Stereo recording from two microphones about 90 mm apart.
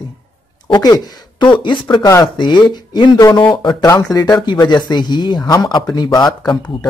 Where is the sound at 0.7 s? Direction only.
50° left (ahead or behind).